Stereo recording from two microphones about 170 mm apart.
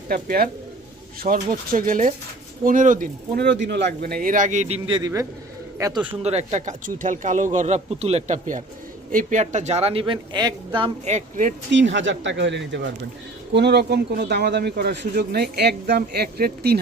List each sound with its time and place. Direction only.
0.1 s a man's voice: 60° right (ahead or behind)
3.4 s a man's voice: 90° right; by 4.8 s 45° right (ahead or behind)
4.9 s a man's voice: 25° right (ahead or behind)
6.2 s a woman's voice: 40° right (ahead or behind)
11.0 s speech: 45° right (ahead or behind)
11.7 s a man's voice: 90° right; by 16.7 s 70° right (ahead or behind)